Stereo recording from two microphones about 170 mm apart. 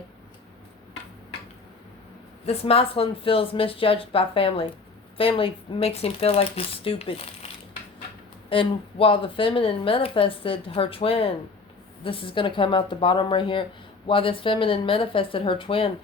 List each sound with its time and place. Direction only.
2.5 s speech: 35° left (ahead or behind)